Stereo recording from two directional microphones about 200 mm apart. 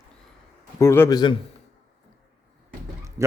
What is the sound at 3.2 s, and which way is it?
Speech, 15° right (ahead or behind).